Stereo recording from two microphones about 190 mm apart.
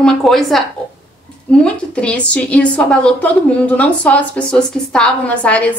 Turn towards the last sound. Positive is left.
turn(degrees=5)  # may be behind; listen again after turning